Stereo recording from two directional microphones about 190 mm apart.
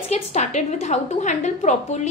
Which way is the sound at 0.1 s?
35° left (ahead or behind).